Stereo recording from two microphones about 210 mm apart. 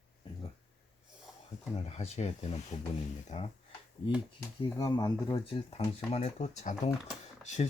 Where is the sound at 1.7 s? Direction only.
30° left (ahead or behind).